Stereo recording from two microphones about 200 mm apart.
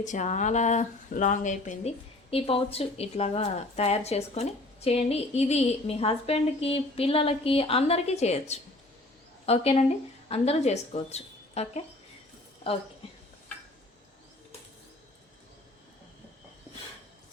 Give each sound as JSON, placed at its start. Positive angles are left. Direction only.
{"t": 0.0, "sound": "speech", "side_deg": 40}